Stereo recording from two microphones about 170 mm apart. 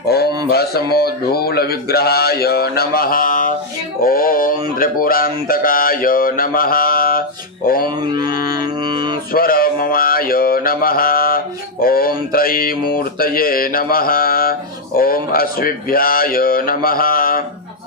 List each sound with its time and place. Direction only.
0.1 s a sound: 65° left (ahead or behind)
0.5 s mantra: 65° left (ahead or behind)
7.9 s mantra: 25° right (ahead or behind)
8.5 s music: 25° right (ahead or behind)
9.3 s mantra: 60° left (ahead or behind)